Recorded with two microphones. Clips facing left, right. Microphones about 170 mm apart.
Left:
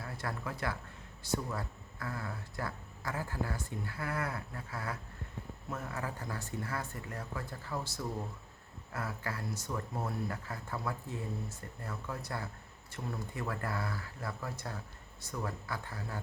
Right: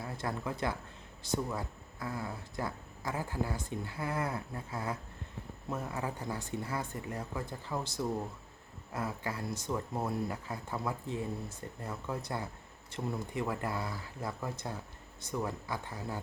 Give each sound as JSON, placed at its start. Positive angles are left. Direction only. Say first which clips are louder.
{"t": 0.0, "sound": "speech", "louder": "right 3 dB", "side_deg": -20}